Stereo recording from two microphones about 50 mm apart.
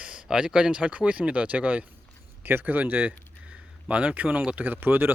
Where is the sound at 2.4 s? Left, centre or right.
Right.